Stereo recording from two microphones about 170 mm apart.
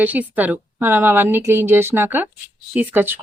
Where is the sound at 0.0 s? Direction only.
10° right (ahead or behind).